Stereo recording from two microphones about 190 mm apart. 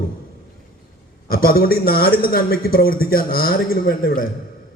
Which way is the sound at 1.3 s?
50° left (ahead or behind).